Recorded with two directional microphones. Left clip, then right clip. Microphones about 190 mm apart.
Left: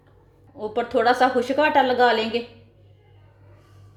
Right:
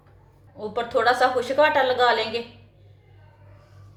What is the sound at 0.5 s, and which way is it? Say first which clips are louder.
A woman's voice: left 2 dB; 30° left (ahead or behind).